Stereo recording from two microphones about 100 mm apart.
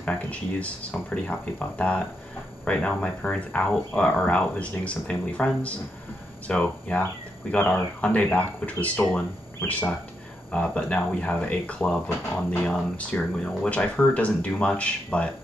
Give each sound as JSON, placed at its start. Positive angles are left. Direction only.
{"t": 0.0, "sound": "speech", "side_deg": 10}